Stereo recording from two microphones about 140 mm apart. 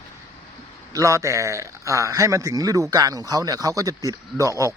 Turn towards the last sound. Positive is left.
turn(degrees=-20)  # may be behind; listen again after turning